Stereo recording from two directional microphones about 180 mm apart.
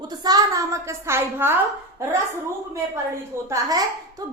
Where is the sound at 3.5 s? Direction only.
20° right (ahead or behind).